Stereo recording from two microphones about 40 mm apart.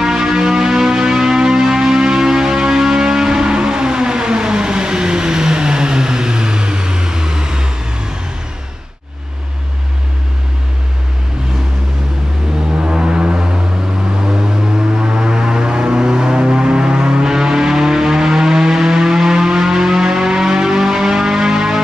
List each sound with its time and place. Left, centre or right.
0.0 s music: centre
12.8 s vehicle: right
14.2 s music: centre